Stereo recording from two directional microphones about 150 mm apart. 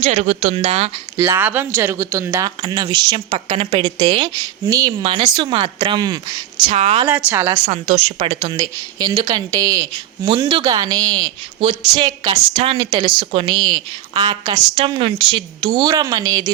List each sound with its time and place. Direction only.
0.0 s a woman's voice: 50° right (ahead or behind)
1.2 s speech: 10° right (ahead or behind)
3.2 s a woman's voice: 40° right (ahead or behind)
3.8 s speech: 25° right (ahead or behind)
6.7 s a woman's voice: 45° right (ahead or behind)
7.1 s speech: 10° right (ahead or behind)
7.7 s a woman's voice: 50° right (ahead or behind)
8.6 s a woman's voice: 30° right (ahead or behind)
14.8 s a woman's voice: 35° right (ahead or behind)